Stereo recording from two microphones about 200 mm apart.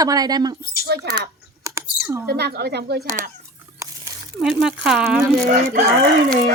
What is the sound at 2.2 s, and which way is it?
Speech, 50° right (ahead or behind).